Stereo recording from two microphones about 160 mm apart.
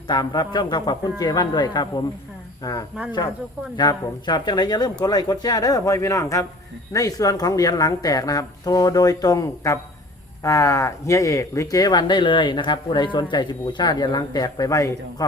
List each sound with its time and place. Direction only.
0.1 s speech: 25° left (ahead or behind)